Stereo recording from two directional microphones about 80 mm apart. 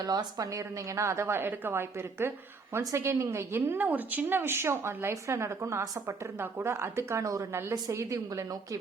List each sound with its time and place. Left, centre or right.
0.0 s a woman's voice: right